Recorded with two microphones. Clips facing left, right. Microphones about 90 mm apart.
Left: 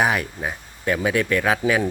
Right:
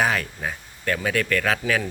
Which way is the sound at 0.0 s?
15° left (ahead or behind).